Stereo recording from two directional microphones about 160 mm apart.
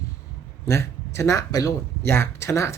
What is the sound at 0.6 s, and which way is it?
Speech, 15° left (ahead or behind).